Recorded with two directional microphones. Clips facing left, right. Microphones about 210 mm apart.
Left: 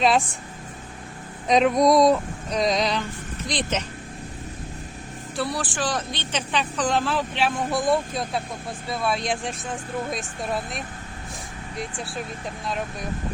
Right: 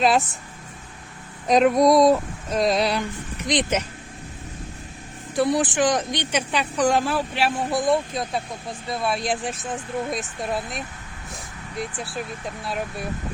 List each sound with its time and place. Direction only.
1.5 s speech: centre (ahead or behind)
3.4 s speech: 20° right (ahead or behind)
5.3 s speech: 20° right (ahead or behind); by 12.2 s centre (ahead or behind)